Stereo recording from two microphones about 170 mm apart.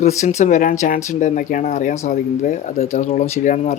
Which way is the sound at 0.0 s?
45° left (ahead or behind).